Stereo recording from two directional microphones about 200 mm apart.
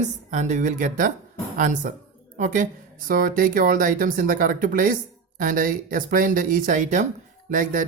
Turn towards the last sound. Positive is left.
turn(degrees=-45)  # may be behind; listen again after turning